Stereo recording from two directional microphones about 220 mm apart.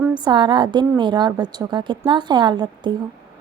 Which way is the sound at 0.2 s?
20° right (ahead or behind).